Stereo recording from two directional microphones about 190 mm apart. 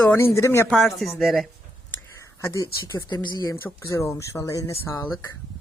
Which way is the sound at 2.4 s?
15° left (ahead or behind).